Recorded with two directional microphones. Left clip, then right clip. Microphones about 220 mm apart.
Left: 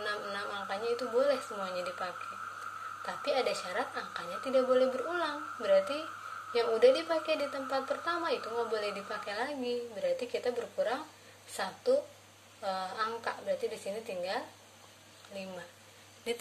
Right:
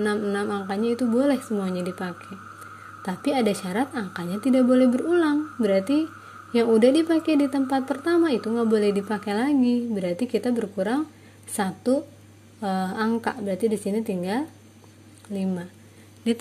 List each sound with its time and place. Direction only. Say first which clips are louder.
0.0 s speech: right 11 dB; 50° right (ahead or behind)